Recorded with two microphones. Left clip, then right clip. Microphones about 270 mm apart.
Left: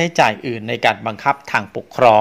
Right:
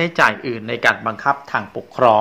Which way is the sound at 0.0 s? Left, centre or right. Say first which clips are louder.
Left 1 dB; left.